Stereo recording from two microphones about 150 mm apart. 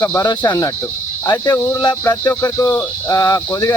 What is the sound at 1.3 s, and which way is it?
Speech, 15° left (ahead or behind).